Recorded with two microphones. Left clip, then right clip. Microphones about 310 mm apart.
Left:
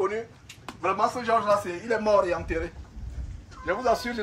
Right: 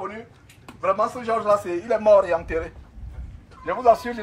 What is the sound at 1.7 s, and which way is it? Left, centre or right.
Speech, right.